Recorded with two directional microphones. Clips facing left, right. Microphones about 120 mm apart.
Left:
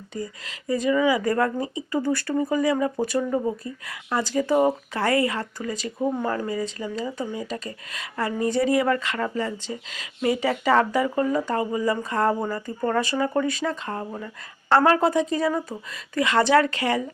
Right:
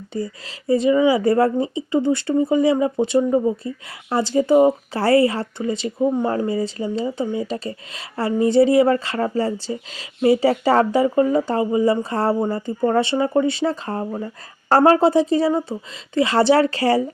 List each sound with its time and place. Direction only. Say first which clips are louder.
0.1 s a woman's voice: right 5 dB; 30° right (ahead or behind)